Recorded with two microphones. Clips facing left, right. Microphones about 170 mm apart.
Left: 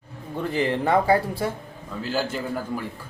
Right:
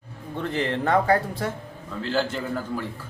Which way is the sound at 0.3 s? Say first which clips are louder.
Left 2 dB; 10° left (ahead or behind).